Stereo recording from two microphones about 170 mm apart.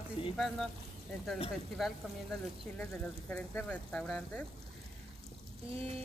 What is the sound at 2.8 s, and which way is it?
Speech, 10° left (ahead or behind).